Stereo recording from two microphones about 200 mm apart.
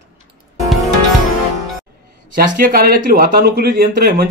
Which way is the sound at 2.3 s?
45° right (ahead or behind).